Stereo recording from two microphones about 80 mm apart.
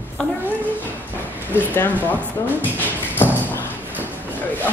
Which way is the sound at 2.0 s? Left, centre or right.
Left.